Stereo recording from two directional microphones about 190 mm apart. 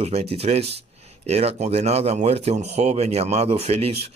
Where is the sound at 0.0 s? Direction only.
30° right (ahead or behind).